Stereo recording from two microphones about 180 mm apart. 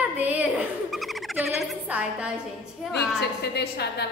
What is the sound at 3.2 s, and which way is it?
Speech, 65° left (ahead or behind).